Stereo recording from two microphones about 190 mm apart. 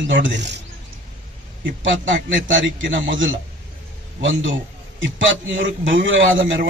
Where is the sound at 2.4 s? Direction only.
80° right.